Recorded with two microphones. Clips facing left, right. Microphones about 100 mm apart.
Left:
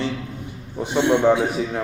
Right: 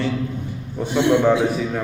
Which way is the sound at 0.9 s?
25° left (ahead or behind).